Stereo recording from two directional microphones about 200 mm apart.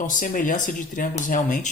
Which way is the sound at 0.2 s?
40° left (ahead or behind).